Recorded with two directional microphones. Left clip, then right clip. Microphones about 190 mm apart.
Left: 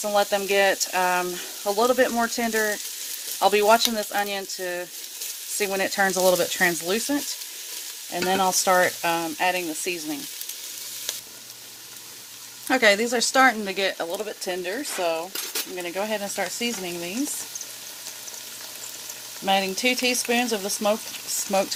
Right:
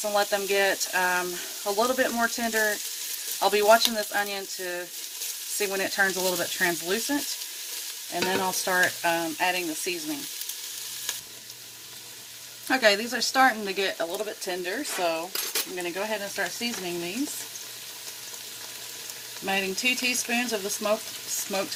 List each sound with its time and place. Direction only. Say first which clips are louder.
0.1 s speech: left 4 dB; 55° left (ahead or behind)
8.1 s frying: left 5 dB; 55° left (ahead or behind)
12.6 s speech: left 3 dB; 35° left (ahead or behind)
14.5 s speech: left 2 dB; 50° left (ahead or behind)
15.7 s frying: left 6 dB; 55° left (ahead or behind)
19.5 s speech: left 4 dB; 50° left (ahead or behind)